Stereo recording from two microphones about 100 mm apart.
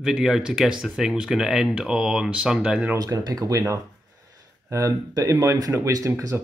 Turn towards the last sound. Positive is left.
turn(degrees=-25)  # may be behind; listen again after turning